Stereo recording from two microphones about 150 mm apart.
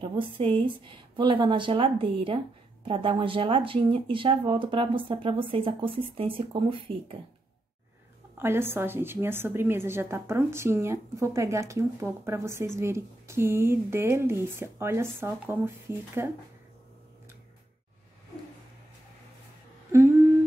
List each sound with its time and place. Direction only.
0.1 s speech: 35° right (ahead or behind)
8.4 s a woman's voice: 15° right (ahead or behind)